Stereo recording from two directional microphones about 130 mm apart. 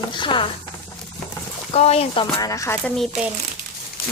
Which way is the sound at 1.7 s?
55° left (ahead or behind).